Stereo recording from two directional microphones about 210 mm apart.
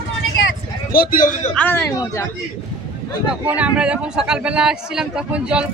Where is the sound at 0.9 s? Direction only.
40° left (ahead or behind).